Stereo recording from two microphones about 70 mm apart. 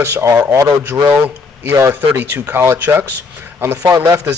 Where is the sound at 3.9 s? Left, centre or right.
Right.